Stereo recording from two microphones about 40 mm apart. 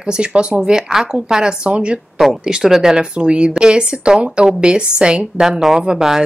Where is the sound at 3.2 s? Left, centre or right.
Right.